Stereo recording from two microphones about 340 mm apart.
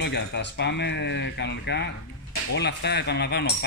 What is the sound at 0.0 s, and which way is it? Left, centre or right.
Speech, left.